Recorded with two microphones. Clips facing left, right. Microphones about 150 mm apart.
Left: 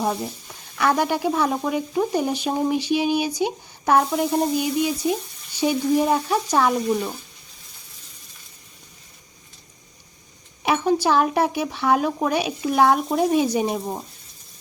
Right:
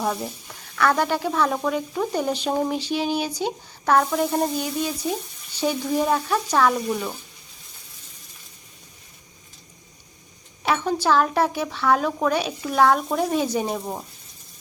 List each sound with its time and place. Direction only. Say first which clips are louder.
0.0 s speech: left 1 dB; 15° left (ahead or behind)
10.6 s a sound: left 3 dB; 15° left (ahead or behind)
11.0 s speech: left 1 dB; 15° left (ahead or behind)